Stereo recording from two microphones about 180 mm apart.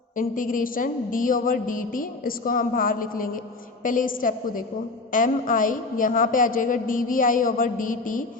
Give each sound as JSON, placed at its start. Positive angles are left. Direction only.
{"t": 0.2, "sound": "a woman's voice", "side_deg": 50}